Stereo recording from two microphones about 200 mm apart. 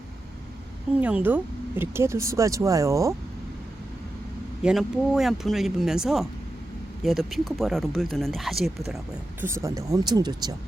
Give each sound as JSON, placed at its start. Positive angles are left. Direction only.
{"t": 1.0, "sound": "speech", "side_deg": -10}
{"t": 4.6, "sound": "speech", "side_deg": 0}
{"t": 9.4, "sound": "speech", "side_deg": -15}